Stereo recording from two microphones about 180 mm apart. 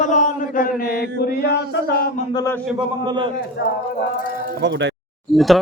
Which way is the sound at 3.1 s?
25° right (ahead or behind).